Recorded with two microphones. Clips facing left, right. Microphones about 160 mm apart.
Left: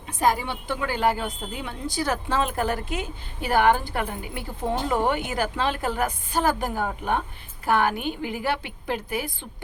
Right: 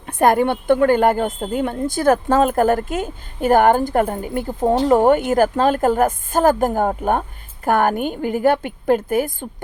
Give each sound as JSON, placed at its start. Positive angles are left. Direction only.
{"t": 0.0, "sound": "a woman's voice", "side_deg": -55}